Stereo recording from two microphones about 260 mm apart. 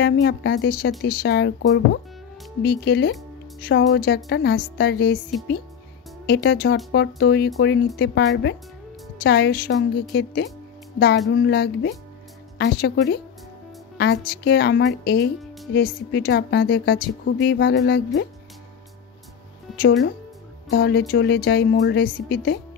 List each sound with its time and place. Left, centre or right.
0.0 s a woman's voice: left
2.6 s a woman's voice: left
19.8 s a woman's voice: left